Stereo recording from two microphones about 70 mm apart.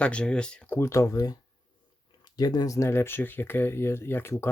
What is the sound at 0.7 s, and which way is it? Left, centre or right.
Speech, left.